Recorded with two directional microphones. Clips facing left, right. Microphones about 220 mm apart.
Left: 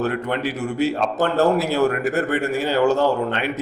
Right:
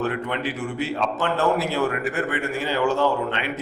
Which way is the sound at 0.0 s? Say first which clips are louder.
Left 3 dB; 40° left (ahead or behind).